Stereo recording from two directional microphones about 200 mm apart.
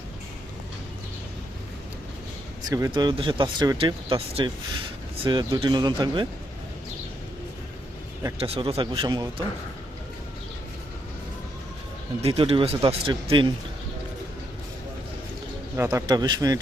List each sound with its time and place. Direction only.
2.6 s speech: 20° right (ahead or behind)
8.4 s speech: 30° right (ahead or behind)
12.2 s speech: 30° right (ahead or behind)
15.7 s a man's voice: 15° right (ahead or behind)